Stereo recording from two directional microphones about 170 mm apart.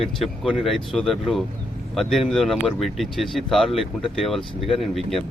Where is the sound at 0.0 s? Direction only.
Centre (ahead or behind).